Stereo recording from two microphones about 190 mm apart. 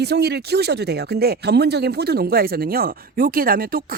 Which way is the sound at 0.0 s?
60° right (ahead or behind).